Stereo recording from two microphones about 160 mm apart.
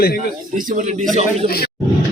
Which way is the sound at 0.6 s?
55° right (ahead or behind).